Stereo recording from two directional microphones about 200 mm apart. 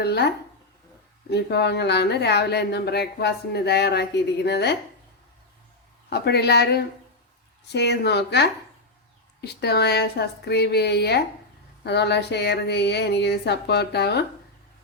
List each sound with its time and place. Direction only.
0.0 s a sound: 55° left (ahead or behind)
1.3 s speech: 55° left (ahead or behind)
6.1 s speech: 55° left (ahead or behind)